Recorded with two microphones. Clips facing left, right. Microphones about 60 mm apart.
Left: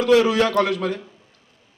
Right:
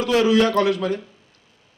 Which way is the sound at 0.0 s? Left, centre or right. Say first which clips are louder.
Left 1 dB; left.